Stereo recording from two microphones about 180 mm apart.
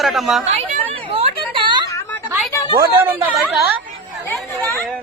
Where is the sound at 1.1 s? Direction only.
30° right (ahead or behind).